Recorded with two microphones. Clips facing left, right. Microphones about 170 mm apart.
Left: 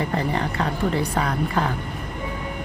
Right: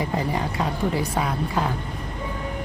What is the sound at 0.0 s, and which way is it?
A woman's voice, 10° right (ahead or behind).